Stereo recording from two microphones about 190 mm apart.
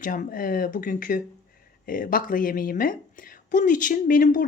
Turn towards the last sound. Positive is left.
turn(degrees=45)  # may be behind; listen again after turning